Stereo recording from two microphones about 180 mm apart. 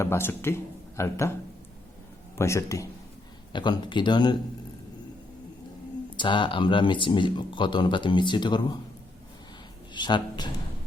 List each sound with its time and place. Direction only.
0.0 s a man's voice: 15° left (ahead or behind)
2.4 s speech: 15° left (ahead or behind)
6.1 s speech: 25° left (ahead or behind)
9.9 s speech: 25° left (ahead or behind)